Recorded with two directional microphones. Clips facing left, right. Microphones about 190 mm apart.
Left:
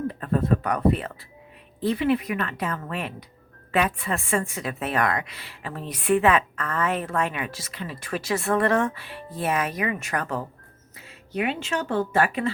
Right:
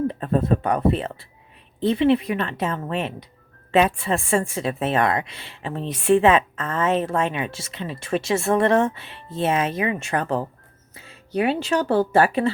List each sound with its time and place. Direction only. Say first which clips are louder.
0.1 s a woman's voice: right 2 dB; 25° right (ahead or behind)